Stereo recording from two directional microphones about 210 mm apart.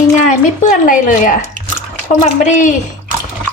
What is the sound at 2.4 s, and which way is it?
Speech, 35° left (ahead or behind).